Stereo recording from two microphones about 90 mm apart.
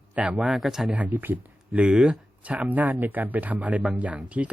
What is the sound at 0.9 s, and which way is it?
Speech, 15° right (ahead or behind).